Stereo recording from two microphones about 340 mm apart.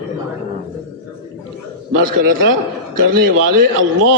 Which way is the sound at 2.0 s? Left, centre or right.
Right.